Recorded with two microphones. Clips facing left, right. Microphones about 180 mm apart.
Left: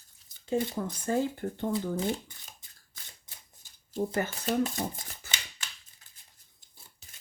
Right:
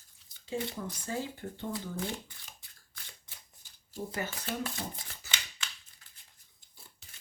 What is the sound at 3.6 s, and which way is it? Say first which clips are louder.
Shuffling cards: left 8 dB; 45° left (ahead or behind).